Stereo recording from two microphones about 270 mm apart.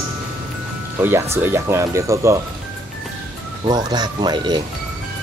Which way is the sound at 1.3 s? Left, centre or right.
Centre.